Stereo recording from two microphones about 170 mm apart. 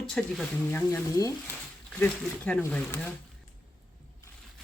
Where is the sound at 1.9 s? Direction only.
10° left (ahead or behind).